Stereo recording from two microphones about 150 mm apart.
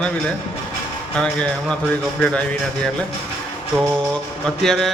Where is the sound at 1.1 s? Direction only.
5° left (ahead or behind).